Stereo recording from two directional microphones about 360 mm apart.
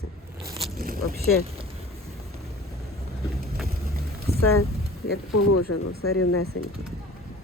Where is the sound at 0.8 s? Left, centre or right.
Right.